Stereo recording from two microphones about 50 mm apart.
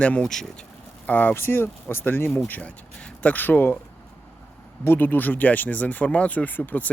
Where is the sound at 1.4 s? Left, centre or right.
Left.